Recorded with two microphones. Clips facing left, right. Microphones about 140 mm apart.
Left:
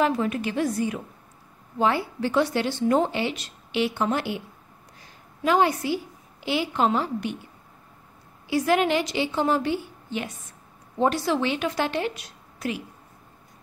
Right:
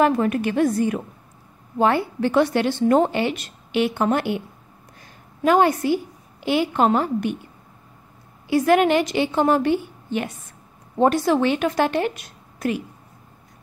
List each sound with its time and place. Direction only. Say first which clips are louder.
0.0 s a woman's voice: right 5 dB; 55° right (ahead or behind)
5.0 s a sound: right 5 dB; 50° right (ahead or behind)
6.4 s a woman's voice: right 5 dB; 50° right (ahead or behind)
8.5 s a woman's voice: right 5 dB; 55° right (ahead or behind)